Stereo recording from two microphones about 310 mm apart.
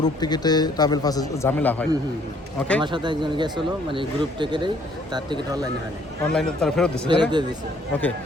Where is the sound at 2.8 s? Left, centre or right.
Centre.